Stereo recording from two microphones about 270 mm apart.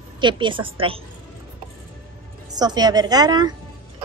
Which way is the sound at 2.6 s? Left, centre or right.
Centre.